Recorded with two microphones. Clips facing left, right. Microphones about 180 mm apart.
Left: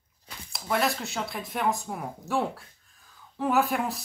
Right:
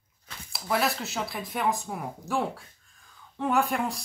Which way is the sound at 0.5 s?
Centre (ahead or behind).